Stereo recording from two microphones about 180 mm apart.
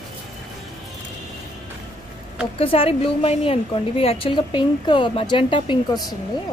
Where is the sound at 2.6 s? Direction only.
30° left (ahead or behind).